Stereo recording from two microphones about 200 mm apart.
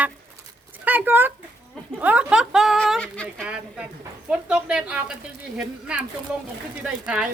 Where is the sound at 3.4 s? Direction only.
5° right (ahead or behind).